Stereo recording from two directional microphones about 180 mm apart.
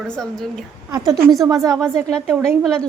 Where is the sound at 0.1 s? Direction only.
Centre (ahead or behind).